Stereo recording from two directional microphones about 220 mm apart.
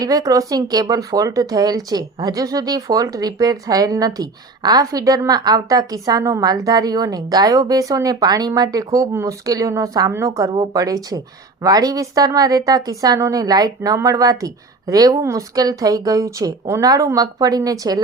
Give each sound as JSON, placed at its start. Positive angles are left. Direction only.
{"t": 0.0, "sound": "speech", "side_deg": -15}